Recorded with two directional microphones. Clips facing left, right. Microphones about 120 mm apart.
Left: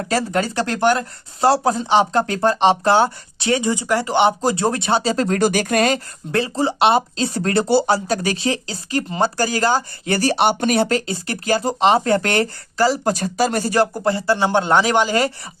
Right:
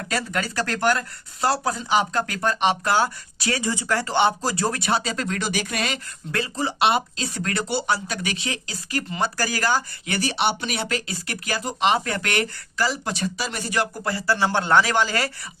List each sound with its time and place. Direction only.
0.0 s speech: 35° left (ahead or behind)
6.3 s speech: 30° left (ahead or behind)